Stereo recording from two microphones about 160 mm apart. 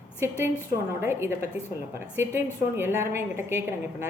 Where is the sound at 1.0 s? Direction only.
15° right (ahead or behind).